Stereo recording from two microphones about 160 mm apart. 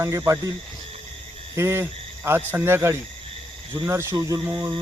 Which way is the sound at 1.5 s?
15° right (ahead or behind).